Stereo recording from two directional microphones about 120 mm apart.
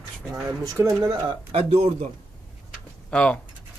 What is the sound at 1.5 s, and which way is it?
Speech, 55° right (ahead or behind).